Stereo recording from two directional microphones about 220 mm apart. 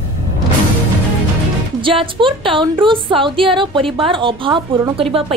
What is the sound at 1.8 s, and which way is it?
Music, 20° right (ahead or behind).